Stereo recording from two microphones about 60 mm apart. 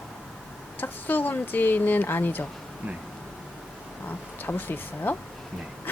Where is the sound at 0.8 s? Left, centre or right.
Left.